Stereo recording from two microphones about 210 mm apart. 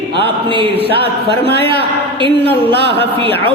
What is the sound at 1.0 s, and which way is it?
Speech, 50° left (ahead or behind).